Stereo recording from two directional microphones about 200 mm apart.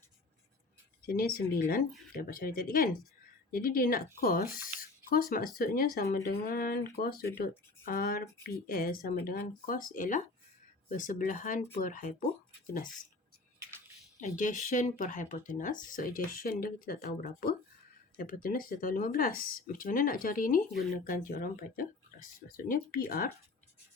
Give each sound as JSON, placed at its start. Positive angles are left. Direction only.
{"t": 1.0, "sound": "speech", "side_deg": 50}
{"t": 14.2, "sound": "speech", "side_deg": 40}